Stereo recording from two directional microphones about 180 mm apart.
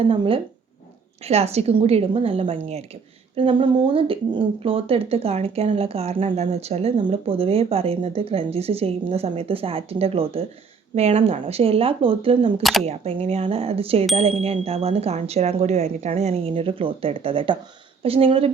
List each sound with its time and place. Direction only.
0.1 s speech: 30° right (ahead or behind)